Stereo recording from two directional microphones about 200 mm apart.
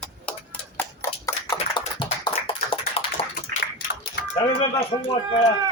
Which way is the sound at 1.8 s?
30° left (ahead or behind).